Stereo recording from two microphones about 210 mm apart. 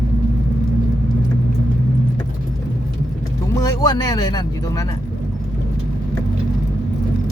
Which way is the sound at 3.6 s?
15° left (ahead or behind).